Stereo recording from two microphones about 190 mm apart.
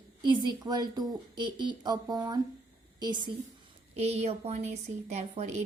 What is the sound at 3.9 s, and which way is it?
A woman's voice, 35° right (ahead or behind).